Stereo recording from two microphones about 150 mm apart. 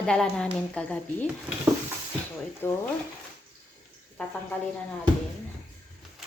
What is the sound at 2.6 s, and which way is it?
Speech, 15° left (ahead or behind).